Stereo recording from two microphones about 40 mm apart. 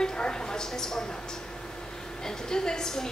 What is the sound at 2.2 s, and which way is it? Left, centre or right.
Speech, centre.